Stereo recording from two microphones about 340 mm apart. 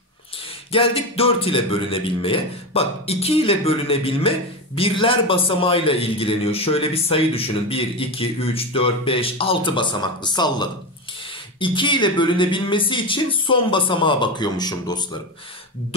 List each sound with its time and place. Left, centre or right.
0.7 s a man's voice: centre